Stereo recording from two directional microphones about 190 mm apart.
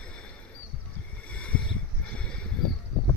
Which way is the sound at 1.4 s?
5° left (ahead or behind).